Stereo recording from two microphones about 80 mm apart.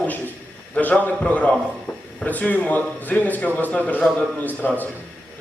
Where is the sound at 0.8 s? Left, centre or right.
Left.